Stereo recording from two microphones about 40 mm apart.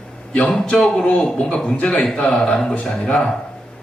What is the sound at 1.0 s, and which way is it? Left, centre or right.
Speech, left.